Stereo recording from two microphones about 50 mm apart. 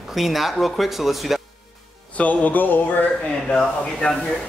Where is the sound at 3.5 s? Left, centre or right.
Centre.